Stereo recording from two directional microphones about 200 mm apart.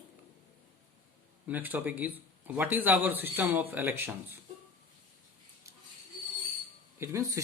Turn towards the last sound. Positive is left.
turn(degrees=-15)  # may be behind; listen again after turning